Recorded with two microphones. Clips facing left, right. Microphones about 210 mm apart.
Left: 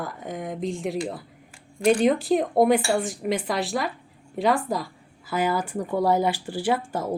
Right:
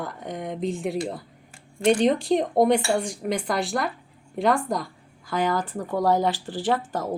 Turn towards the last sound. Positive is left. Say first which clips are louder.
# even
turn(degrees=10)  # may be behind; listen again after turning